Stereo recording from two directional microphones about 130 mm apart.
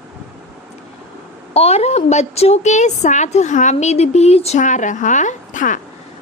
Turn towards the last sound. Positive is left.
turn(degrees=80)